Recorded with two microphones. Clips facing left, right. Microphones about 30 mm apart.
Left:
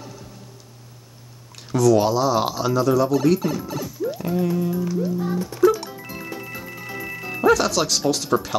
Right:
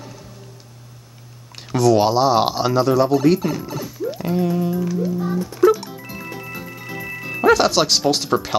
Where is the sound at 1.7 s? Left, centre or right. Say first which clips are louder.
Right 2 dB; right.